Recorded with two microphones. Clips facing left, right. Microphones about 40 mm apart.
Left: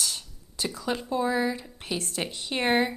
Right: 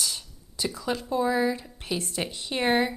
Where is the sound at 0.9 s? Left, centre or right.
Left.